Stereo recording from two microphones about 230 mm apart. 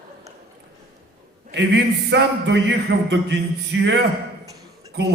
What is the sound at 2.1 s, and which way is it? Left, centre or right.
A man's voice, right.